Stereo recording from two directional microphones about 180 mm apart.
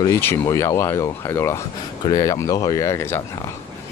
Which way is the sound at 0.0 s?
15° left (ahead or behind).